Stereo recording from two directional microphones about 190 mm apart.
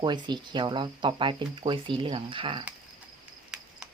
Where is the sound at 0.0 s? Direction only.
25° right (ahead or behind).